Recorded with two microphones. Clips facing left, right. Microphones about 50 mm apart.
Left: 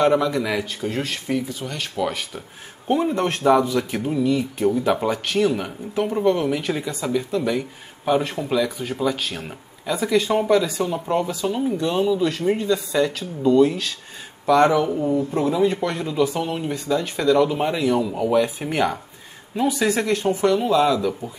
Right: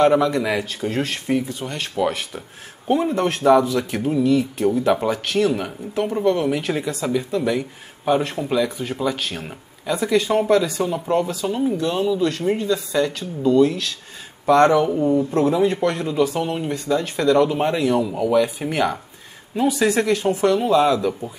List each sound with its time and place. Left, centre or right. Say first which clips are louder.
0.0 s speech: right 2 dB; centre
2.9 s speech: right 1 dB; centre